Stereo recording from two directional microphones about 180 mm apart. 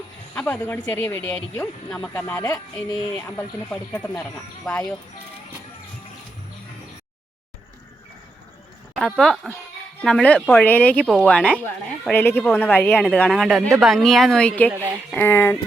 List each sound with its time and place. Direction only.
0.3 s speech: 5° left (ahead or behind)
9.0 s speech: centre (ahead or behind)
14.7 s speech: 10° right (ahead or behind)
15.1 s speech: 10° left (ahead or behind)